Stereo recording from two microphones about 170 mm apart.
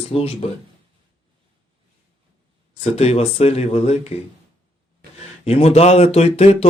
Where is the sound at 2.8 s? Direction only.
40° left (ahead or behind).